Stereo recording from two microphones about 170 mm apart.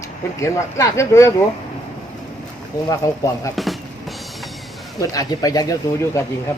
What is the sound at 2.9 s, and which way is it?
Speech, 20° left (ahead or behind).